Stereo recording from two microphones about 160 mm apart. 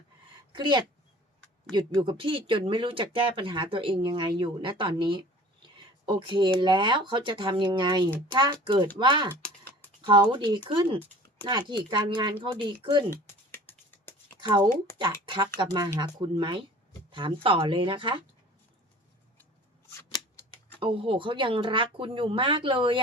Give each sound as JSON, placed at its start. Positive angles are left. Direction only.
{"t": 0.5, "sound": "speech", "side_deg": -30}
{"t": 2.0, "sound": "speech", "side_deg": -30}
{"t": 13.1, "sound": "a sound", "side_deg": 15}
{"t": 14.4, "sound": "speech", "side_deg": -25}
{"t": 19.9, "sound": "scissors", "side_deg": 20}
{"t": 20.7, "sound": "speech", "side_deg": -35}